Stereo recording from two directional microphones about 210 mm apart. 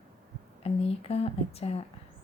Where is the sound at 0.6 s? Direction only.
30° left (ahead or behind).